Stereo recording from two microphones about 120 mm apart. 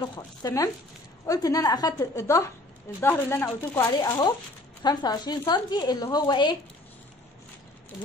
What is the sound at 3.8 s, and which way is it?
A woman's voice, 35° left (ahead or behind).